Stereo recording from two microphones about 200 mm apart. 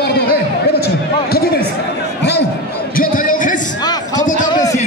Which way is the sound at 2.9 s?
40° left (ahead or behind).